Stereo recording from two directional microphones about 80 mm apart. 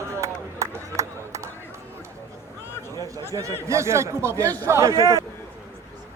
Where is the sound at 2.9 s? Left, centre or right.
Right.